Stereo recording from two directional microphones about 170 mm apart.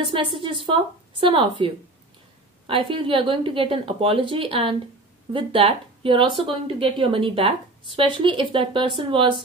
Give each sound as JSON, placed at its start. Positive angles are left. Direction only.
{"t": 0.0, "sound": "speech", "side_deg": -30}